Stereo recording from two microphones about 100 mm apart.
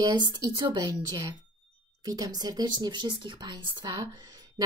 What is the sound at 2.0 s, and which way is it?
A woman's voice, 40° right (ahead or behind).